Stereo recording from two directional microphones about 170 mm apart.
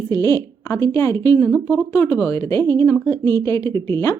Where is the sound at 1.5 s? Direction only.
5° left (ahead or behind).